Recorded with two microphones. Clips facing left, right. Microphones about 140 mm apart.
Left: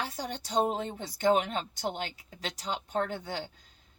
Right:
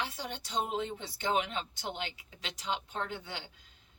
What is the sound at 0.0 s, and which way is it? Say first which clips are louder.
Speech: left 3 dB; 40° left (ahead or behind).